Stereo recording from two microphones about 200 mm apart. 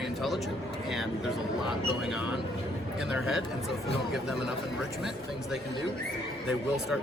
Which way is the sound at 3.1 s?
5° right (ahead or behind).